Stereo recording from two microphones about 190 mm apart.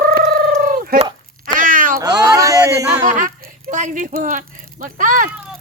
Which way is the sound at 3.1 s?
45° right (ahead or behind).